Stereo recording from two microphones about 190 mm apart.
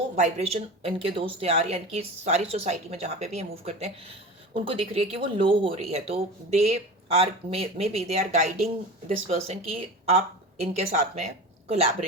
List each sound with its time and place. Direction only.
0.2 s speech: 35° right (ahead or behind)